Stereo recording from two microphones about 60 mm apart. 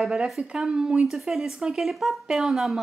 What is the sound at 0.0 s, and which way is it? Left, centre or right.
A woman's voice, centre.